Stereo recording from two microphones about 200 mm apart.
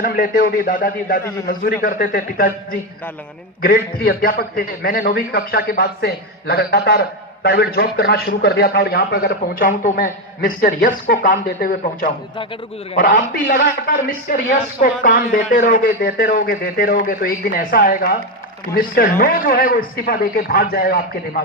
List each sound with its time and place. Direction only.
0.0 s a man's voice: 45° left (ahead or behind)
3.9 s a man's voice: 45° left (ahead or behind)